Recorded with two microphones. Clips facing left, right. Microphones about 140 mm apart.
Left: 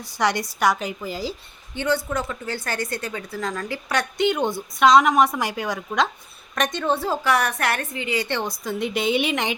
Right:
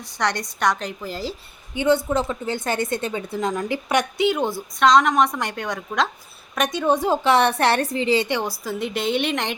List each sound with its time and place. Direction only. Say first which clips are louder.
0.0 s a woman's voice: left 2 dB; 5° left (ahead or behind)
1.7 s a woman's voice: right 4 dB; 15° right (ahead or behind)
4.2 s a woman's voice: right 1 dB; 5° right (ahead or behind); by 8.3 s 30° right (ahead or behind)
8.3 s a woman's voice: right 1 dB; 10° right (ahead or behind)